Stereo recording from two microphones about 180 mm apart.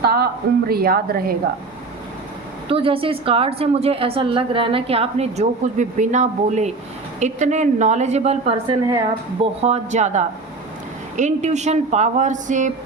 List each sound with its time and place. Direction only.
0.0 s a sound: 60° right (ahead or behind)
0.7 s a woman's voice: 55° right (ahead or behind)
2.6 s a woman's voice: 30° right (ahead or behind)